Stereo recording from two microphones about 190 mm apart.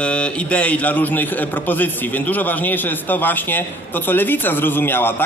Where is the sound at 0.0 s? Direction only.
5° left (ahead or behind).